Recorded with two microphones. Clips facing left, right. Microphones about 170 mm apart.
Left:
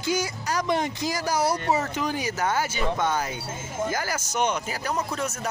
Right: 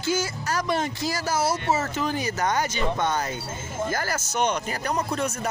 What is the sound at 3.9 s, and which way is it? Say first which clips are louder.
Speech: right 1 dB; 10° left (ahead or behind).